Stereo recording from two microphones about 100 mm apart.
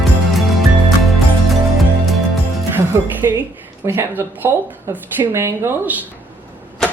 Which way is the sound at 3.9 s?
20° right (ahead or behind).